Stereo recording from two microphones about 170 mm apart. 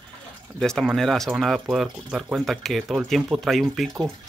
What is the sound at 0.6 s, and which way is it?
Speech, centre (ahead or behind).